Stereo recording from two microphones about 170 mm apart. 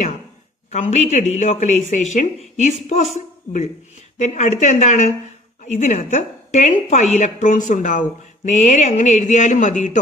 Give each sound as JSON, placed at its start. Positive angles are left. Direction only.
{"t": 0.7, "sound": "a woman's voice", "side_deg": 45}